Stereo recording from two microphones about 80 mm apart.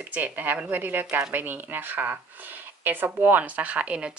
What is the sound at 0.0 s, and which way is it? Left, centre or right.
Speech, right.